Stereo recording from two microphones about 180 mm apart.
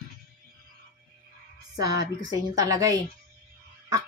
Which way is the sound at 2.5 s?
20° right (ahead or behind).